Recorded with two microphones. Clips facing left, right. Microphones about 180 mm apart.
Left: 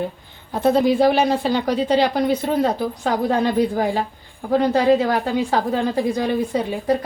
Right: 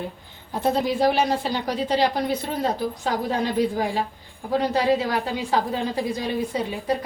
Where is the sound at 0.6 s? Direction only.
60° left (ahead or behind).